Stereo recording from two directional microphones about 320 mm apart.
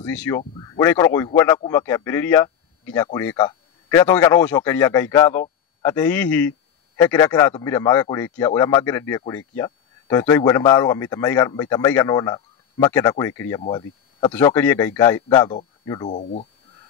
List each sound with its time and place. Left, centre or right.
0.0 s speech: centre; by 16.4 s left